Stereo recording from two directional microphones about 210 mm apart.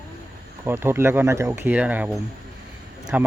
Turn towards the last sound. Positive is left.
turn(degrees=-5)  # may be behind; listen again after turning